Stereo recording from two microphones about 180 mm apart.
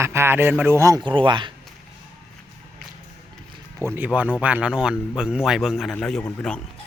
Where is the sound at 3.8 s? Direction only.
15° right (ahead or behind); by 6.2 s 5° left (ahead or behind).